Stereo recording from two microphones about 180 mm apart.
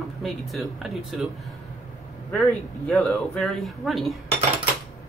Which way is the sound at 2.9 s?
5° left (ahead or behind).